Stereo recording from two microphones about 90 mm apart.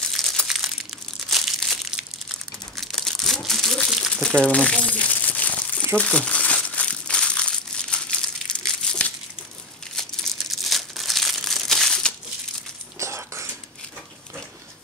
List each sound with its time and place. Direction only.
0.1 s crumpling: 5° left (ahead or behind)
4.4 s crumpling: 10° left (ahead or behind)
13.0 s whispering: 35° right (ahead or behind)